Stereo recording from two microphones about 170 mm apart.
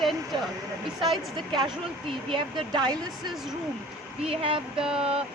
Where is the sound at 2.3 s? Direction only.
25° right (ahead or behind).